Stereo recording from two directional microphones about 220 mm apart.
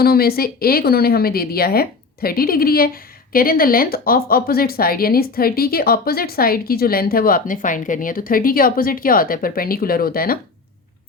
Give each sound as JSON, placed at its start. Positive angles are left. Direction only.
{"t": 0.0, "sound": "a woman's voice", "side_deg": 45}